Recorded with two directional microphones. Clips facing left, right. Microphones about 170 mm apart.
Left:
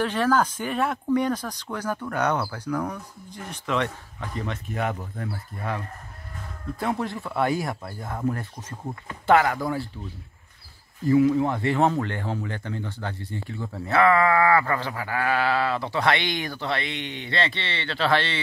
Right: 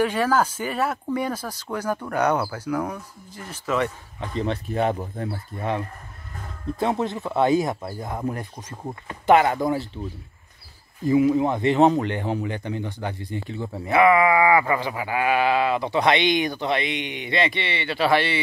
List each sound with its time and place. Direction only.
0.0 s speech: 10° right (ahead or behind)
4.2 s speech: 25° right (ahead or behind)
6.8 s speech: 20° right (ahead or behind)
11.1 s speech: 20° right (ahead or behind)